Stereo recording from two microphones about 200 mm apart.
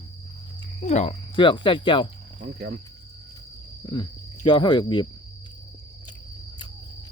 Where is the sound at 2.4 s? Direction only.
55° right (ahead or behind).